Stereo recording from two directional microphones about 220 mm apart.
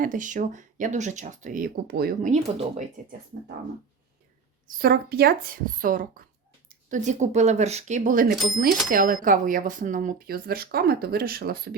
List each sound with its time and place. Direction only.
0.0 s speech: 35° right (ahead or behind)
4.8 s speech: 45° right (ahead or behind)